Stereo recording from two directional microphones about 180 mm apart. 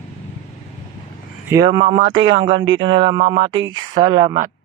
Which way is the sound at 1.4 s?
20° right (ahead or behind).